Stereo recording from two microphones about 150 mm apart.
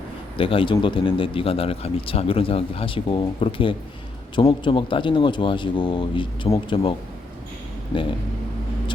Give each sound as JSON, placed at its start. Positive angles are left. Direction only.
{"t": 0.3, "sound": "speech", "side_deg": 35}
{"t": 7.9, "sound": "speech", "side_deg": 35}